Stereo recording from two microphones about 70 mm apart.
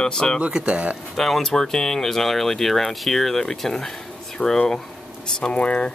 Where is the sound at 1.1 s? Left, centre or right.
Centre.